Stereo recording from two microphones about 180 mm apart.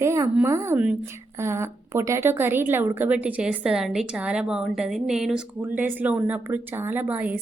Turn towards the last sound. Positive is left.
turn(degrees=-10)  # may be behind; listen again after turning